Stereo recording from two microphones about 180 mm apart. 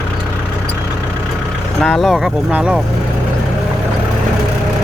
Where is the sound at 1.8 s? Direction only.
Centre (ahead or behind).